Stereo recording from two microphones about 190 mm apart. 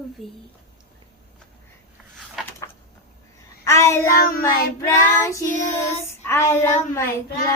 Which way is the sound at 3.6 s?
15° left (ahead or behind).